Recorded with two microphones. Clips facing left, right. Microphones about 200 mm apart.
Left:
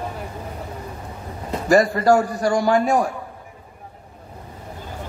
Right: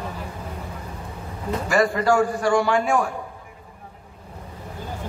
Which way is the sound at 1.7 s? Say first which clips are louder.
Left 4 dB; 40° left (ahead or behind).